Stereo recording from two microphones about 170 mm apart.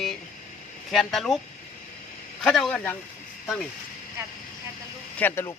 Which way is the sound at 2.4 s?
Centre (ahead or behind).